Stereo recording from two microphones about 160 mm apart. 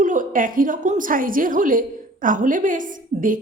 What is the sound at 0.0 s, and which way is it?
A woman's voice, 55° right (ahead or behind).